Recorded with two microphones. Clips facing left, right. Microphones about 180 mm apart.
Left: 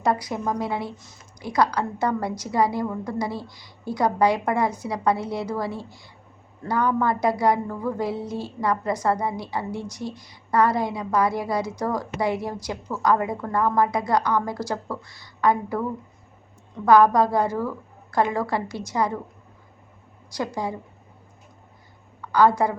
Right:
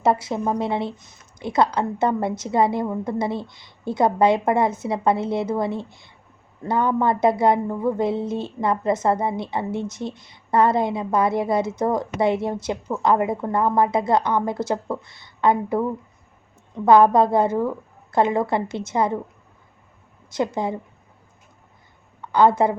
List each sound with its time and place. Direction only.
0.0 s speech: 25° right (ahead or behind)
20.3 s speech: 25° right (ahead or behind)
22.2 s a woman's voice: 25° right (ahead or behind)